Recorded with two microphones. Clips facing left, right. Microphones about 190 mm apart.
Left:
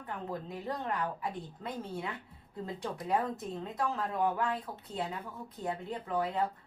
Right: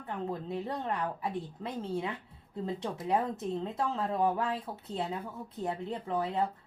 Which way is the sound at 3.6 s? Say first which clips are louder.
Right 2 dB; 25° right (ahead or behind).